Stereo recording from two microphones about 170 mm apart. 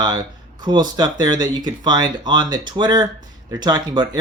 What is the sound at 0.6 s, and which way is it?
Speech, 25° right (ahead or behind).